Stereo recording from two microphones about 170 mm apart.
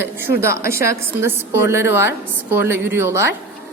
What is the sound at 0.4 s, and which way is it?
Speech, 15° right (ahead or behind).